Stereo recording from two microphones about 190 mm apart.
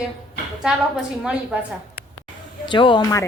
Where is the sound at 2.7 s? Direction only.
25° left (ahead or behind).